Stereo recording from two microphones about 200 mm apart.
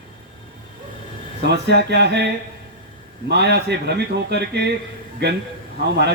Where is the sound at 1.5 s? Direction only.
55° right (ahead or behind).